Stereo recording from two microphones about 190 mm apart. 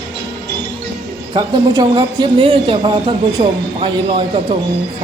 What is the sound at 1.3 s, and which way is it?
A man's voice, 20° right (ahead or behind).